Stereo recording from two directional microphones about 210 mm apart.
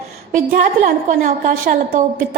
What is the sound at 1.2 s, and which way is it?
A woman's voice, 40° right (ahead or behind).